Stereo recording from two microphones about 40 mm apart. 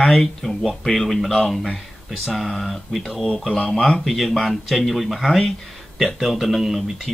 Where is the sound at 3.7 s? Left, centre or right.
Centre.